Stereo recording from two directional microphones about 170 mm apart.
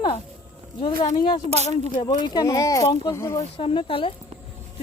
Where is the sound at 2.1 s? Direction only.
20° left (ahead or behind).